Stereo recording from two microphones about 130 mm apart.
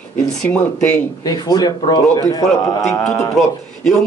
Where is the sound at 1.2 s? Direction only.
30° left (ahead or behind).